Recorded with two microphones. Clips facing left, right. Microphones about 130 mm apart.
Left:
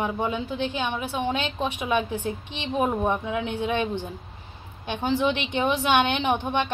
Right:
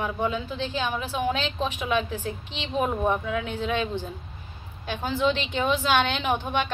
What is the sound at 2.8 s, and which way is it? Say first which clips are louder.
Speech: even; 20° left (ahead or behind).